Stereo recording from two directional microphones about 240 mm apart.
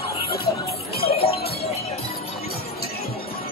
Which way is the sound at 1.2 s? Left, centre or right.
Left.